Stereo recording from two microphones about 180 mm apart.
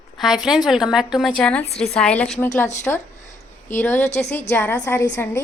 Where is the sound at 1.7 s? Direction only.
35° left (ahead or behind).